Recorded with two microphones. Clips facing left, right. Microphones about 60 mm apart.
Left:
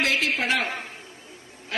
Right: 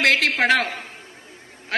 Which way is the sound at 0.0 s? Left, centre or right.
Right.